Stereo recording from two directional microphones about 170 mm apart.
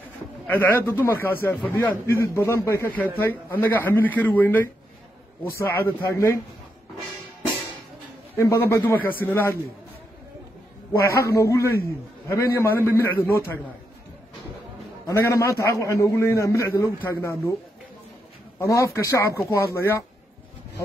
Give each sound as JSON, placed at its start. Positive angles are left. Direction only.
{"t": 0.5, "sound": "a man's voice", "side_deg": 15}
{"t": 8.4, "sound": "a man's voice", "side_deg": 15}
{"t": 10.9, "sound": "a man's voice", "side_deg": 15}
{"t": 15.0, "sound": "a man's voice", "side_deg": 15}
{"t": 18.6, "sound": "a man's voice", "side_deg": 15}